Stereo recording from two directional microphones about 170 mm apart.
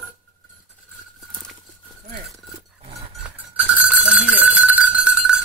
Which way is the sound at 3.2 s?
10° right (ahead or behind).